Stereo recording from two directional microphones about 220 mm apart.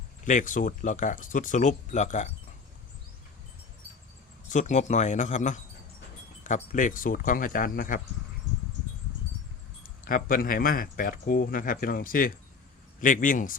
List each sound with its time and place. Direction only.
0.3 s speech: 35° left (ahead or behind)
4.4 s speech: 35° left (ahead or behind)
9.8 s speech: 40° left (ahead or behind)